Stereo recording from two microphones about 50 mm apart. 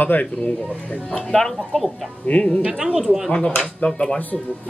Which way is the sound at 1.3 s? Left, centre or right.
Centre.